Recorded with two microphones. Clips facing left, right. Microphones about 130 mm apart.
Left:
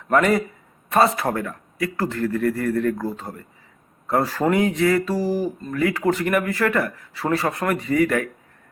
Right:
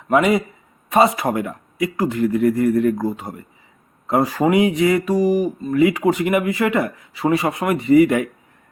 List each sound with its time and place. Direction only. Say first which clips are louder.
0.1 s speech: right 2 dB; 10° right (ahead or behind)